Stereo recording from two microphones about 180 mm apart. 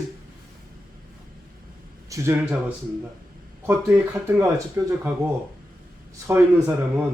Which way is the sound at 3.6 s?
10° right (ahead or behind).